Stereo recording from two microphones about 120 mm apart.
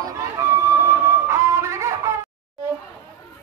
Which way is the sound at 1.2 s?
25° right (ahead or behind).